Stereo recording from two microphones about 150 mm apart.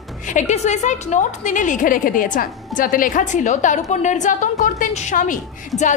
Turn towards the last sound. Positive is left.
turn(degrees=60)  # may be behind; listen again after turning